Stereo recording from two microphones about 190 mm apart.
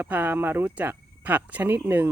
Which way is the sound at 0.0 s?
10° right (ahead or behind).